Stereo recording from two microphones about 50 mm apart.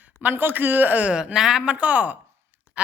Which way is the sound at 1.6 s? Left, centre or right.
Right.